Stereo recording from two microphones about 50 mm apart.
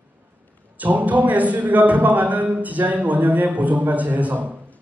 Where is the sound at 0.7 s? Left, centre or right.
Right.